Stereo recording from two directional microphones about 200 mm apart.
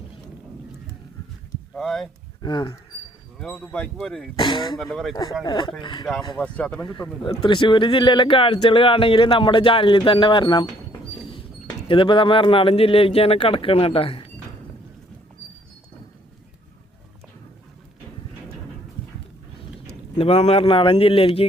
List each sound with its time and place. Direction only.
1.7 s speech: centre (ahead or behind)
2.4 s speech: 20° left (ahead or behind)
3.3 s speech: 5° left (ahead or behind)
4.4 s speech: 20° left (ahead or behind)
4.8 s speech: centre (ahead or behind)
5.1 s speech: 20° left (ahead or behind)
6.3 s speech: 5° left (ahead or behind)
6.8 s speech: 20° left (ahead or behind)
11.9 s speech: 25° left (ahead or behind)
20.1 s speech: 30° left (ahead or behind)